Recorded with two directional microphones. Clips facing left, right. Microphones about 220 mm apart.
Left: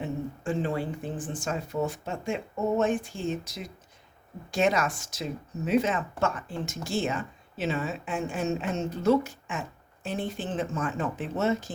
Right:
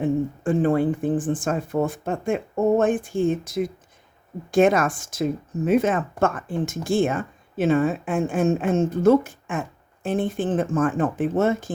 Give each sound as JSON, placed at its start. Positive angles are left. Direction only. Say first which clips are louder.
{"t": 0.0, "sound": "speech", "louder": "right 9 dB", "side_deg": -50}